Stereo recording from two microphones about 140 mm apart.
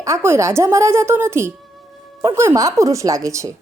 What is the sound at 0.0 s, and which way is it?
A woman's voice, 20° right (ahead or behind).